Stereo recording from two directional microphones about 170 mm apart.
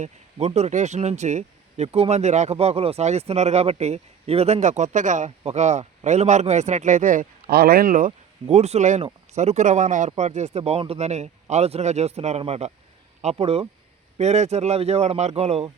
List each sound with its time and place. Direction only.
0.0 s speech: 40° right (ahead or behind)